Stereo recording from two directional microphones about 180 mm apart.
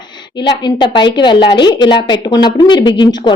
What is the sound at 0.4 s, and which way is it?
Speech, 25° left (ahead or behind).